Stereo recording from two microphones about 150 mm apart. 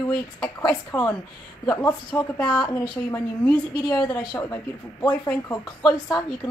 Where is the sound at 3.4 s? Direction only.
5° left (ahead or behind).